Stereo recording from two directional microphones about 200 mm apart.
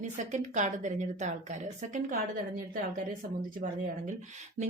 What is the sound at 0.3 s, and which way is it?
Speech, 35° right (ahead or behind).